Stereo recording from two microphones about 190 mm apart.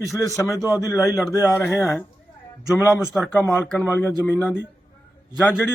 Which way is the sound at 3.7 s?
10° left (ahead or behind).